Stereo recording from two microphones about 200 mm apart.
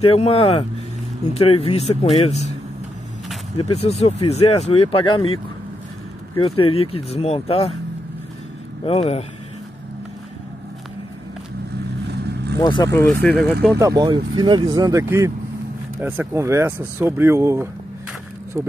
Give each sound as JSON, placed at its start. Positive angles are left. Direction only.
{"t": 0.0, "sound": "speech", "side_deg": 30}
{"t": 3.5, "sound": "speech", "side_deg": 30}
{"t": 6.5, "sound": "speech", "side_deg": 30}
{"t": 8.8, "sound": "speech", "side_deg": 30}
{"t": 12.1, "sound": "vehicle", "side_deg": -55}
{"t": 12.5, "sound": "speech", "side_deg": 20}
{"t": 12.9, "sound": "speech", "side_deg": 5}
{"t": 13.7, "sound": "speech", "side_deg": -15}